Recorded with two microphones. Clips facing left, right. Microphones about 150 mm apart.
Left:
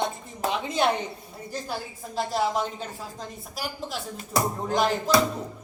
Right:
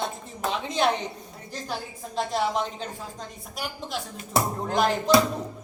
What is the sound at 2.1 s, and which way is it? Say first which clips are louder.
Speech: even; 5° left (ahead or behind).